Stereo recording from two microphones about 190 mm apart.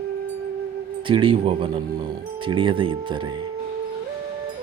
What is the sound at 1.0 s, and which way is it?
Speech, 25° right (ahead or behind).